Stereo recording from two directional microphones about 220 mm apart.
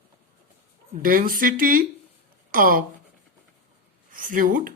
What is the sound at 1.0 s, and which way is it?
Speech, 40° right (ahead or behind).